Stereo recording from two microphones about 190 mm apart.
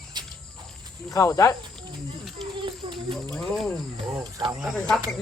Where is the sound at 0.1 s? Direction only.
25° right (ahead or behind).